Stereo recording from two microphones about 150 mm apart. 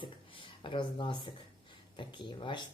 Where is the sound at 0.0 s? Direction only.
35° left (ahead or behind).